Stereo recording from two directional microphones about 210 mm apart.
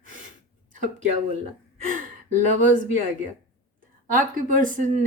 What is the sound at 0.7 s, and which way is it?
Speech, 35° right (ahead or behind).